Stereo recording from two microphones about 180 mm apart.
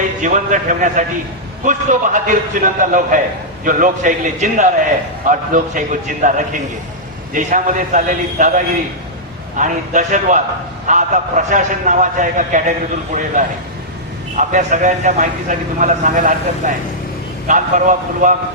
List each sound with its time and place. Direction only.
0.2 s a man's voice: 45° right (ahead or behind)